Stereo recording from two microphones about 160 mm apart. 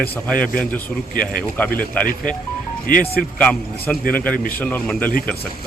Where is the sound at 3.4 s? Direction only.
5° left (ahead or behind).